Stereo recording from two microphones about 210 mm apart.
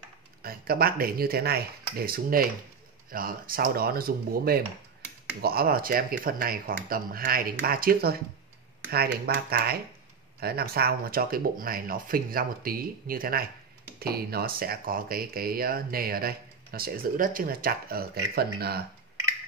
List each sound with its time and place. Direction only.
0.4 s speech: 45° right (ahead or behind)